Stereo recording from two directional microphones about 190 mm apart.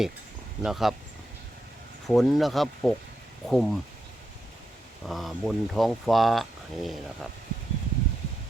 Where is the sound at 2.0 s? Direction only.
Centre (ahead or behind).